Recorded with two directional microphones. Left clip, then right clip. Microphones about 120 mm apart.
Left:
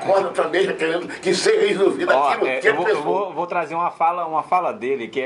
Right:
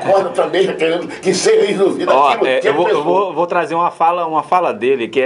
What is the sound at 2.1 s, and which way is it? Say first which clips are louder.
Speech: right 6 dB; 5° right (ahead or behind).